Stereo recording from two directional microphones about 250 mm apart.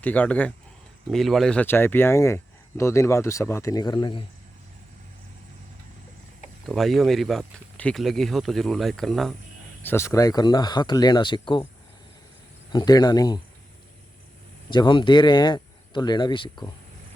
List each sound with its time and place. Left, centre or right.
0.0 s speech: centre
6.7 s speech: centre
12.7 s speech: centre
14.7 s speech: centre